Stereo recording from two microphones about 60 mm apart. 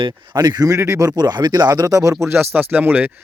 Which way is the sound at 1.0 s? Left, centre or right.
Right.